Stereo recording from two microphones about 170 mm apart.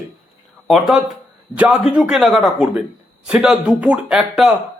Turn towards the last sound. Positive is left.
turn(degrees=-5)  # may be behind; listen again after turning